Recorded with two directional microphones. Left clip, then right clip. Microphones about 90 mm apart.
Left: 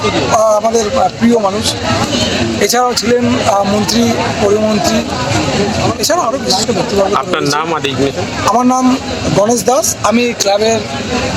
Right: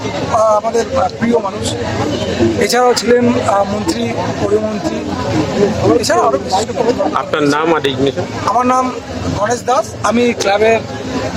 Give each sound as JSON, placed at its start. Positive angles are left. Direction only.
{"t": 0.3, "sound": "speech", "side_deg": -10}
{"t": 2.4, "sound": "speech", "side_deg": -25}
{"t": 6.1, "sound": "speech", "side_deg": -15}